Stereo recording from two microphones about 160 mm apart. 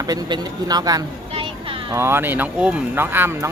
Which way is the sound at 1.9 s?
15° right (ahead or behind).